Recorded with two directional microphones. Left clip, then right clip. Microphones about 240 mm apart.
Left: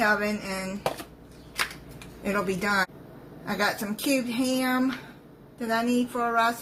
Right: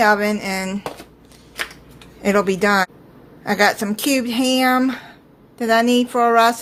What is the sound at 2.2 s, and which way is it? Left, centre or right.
Speech, right.